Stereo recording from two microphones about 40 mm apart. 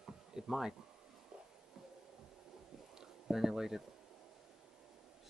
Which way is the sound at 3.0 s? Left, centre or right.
Centre.